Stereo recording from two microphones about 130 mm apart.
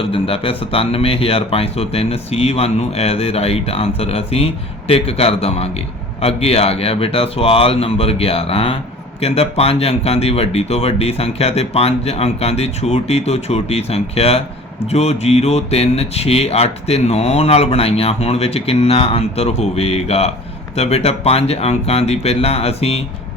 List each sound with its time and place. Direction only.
0.0 s speech: 45° left (ahead or behind)